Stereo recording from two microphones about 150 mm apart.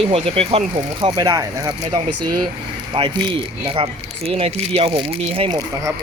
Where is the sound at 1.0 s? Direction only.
25° right (ahead or behind).